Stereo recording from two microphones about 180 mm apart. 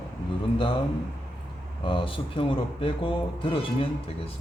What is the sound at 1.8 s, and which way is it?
Speech, 30° left (ahead or behind).